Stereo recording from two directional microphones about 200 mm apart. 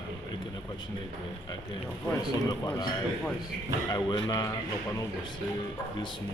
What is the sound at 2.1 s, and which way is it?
Speech, 20° left (ahead or behind).